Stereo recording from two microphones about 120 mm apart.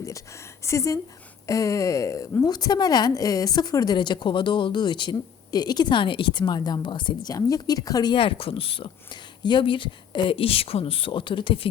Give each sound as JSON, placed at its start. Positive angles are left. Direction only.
{"t": 0.6, "sound": "a woman's voice", "side_deg": 25}
{"t": 8.1, "sound": "speech", "side_deg": 50}